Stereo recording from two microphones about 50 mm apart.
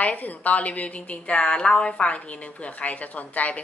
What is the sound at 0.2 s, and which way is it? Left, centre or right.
A woman's voice, left.